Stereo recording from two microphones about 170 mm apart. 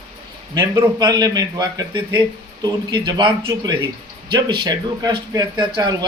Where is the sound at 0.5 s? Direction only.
20° right (ahead or behind).